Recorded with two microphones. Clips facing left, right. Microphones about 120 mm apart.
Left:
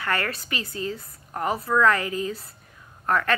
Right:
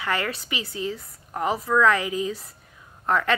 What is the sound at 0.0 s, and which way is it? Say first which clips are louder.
Speech: even; 15° right (ahead or behind).